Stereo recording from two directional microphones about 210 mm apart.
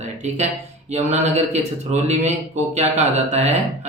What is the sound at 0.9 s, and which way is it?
Speech, 35° right (ahead or behind).